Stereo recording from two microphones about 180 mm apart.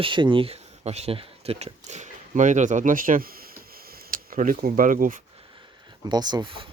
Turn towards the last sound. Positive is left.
turn(degrees=-25)  # may be behind; listen again after turning